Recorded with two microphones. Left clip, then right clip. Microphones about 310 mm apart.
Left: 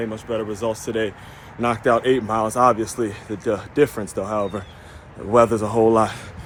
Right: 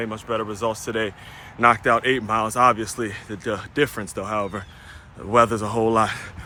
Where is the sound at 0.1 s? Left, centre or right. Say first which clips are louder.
Even; centre.